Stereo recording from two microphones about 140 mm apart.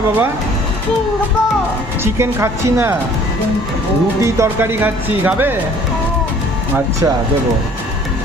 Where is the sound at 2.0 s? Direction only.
20° right (ahead or behind).